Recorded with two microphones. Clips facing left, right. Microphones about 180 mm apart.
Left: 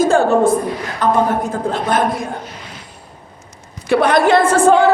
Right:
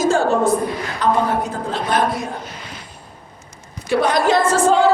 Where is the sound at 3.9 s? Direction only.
60° left (ahead or behind).